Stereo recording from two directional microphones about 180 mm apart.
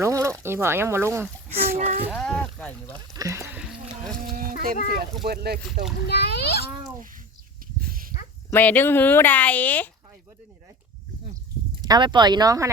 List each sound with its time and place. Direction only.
0.0 s speech: 15° right (ahead or behind)
1.8 s speech: 35° right (ahead or behind)
2.1 s boat: 5° left (ahead or behind)
2.9 s speech: 20° right (ahead or behind)
3.6 s music: centre (ahead or behind)
4.3 s a sound: 50° right (ahead or behind)
5.2 s speech: 60° right (ahead or behind)
6.1 s a child's voice: 65° left (ahead or behind)
8.4 s speech: 10° left (ahead or behind)
11.8 s speech: 25° right (ahead or behind)